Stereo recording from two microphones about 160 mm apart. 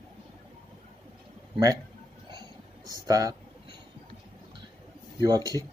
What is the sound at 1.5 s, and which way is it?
Speech, 20° right (ahead or behind).